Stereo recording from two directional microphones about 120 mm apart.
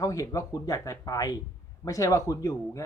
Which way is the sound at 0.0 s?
25° left (ahead or behind).